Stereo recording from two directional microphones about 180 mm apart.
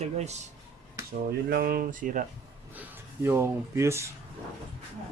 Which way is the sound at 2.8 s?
15° right (ahead or behind).